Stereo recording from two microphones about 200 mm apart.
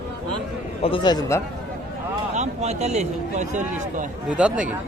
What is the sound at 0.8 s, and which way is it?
Speech, 25° left (ahead or behind).